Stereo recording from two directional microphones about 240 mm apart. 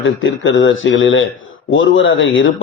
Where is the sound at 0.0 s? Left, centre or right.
Left.